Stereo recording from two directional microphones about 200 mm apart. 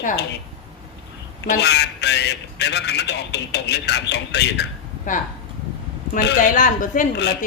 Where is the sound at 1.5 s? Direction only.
60° left (ahead or behind).